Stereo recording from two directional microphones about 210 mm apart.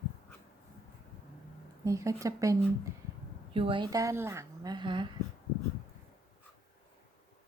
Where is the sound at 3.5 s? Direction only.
25° right (ahead or behind).